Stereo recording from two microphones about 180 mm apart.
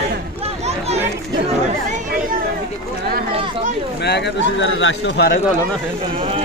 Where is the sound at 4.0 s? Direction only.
70° left (ahead or behind); by 5.3 s 90° left.